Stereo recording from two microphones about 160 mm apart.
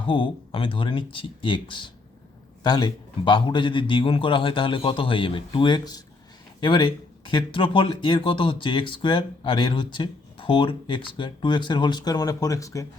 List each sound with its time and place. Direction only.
0.1 s a man's voice: 30° left (ahead or behind)